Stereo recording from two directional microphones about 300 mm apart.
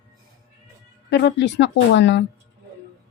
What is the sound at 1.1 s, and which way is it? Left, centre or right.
Speech, left.